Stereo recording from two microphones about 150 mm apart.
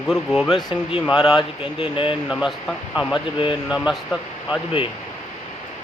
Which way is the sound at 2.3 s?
Centre (ahead or behind).